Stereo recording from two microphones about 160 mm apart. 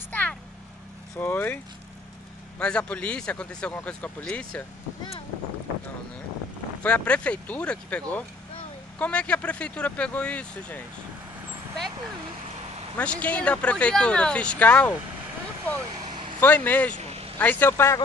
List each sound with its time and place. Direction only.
0.1 s a sound: 10° left (ahead or behind)
1.1 s speech: 10° left (ahead or behind)
2.6 s speech: 5° left (ahead or behind)
6.8 s speech: 10° left (ahead or behind)
12.9 s speech: 10° left (ahead or behind)
16.3 s speech: 10° left (ahead or behind)
17.0 s vehicle: 40° right (ahead or behind)
17.4 s speech: 10° left (ahead or behind)